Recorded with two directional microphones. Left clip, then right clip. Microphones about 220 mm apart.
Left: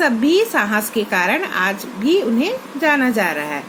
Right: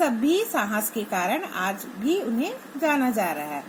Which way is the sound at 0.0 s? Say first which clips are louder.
Left 7 dB; 10° left (ahead or behind).